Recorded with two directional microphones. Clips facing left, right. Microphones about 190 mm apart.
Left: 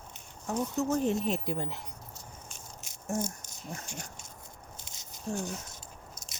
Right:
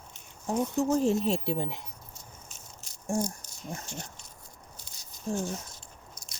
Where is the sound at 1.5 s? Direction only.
20° right (ahead or behind).